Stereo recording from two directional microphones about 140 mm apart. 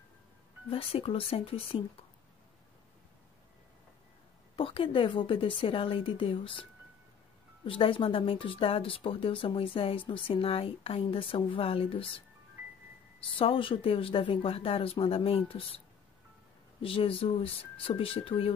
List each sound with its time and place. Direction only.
0.7 s speech: 45° left (ahead or behind)
4.6 s speech: 40° left (ahead or behind)
13.4 s speech: 40° left (ahead or behind)
16.8 s speech: 40° left (ahead or behind)